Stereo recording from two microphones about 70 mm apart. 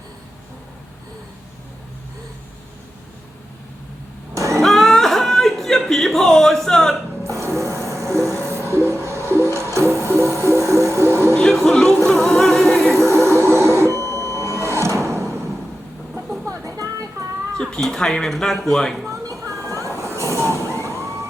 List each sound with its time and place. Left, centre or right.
4.4 s cat: right
4.6 s a sound: centre
7.3 s music: right
11.3 s music: centre
13.1 s printer: right
16.5 s a sound: right
17.6 s speech: centre
19.1 s train: right
20.0 s vehicle: right